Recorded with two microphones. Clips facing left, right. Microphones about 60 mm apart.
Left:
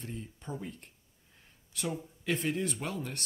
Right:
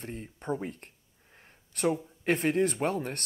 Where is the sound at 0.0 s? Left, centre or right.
Right.